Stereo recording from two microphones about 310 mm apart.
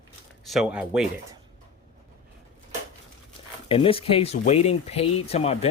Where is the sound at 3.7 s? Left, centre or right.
Centre.